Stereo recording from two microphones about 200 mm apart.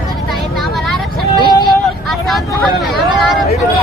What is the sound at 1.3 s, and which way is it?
Vehicle, 20° left (ahead or behind).